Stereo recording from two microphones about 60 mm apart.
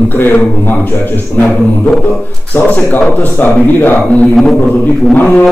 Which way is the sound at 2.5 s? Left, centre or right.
Left.